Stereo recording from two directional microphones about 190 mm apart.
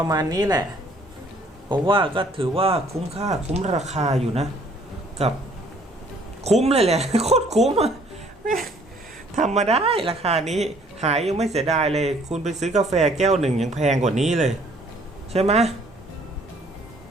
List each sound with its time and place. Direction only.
0.0 s speech: 20° right (ahead or behind)
1.7 s speech: 25° right (ahead or behind)
6.4 s speech: 35° right (ahead or behind)
9.3 s speech: 40° right (ahead or behind)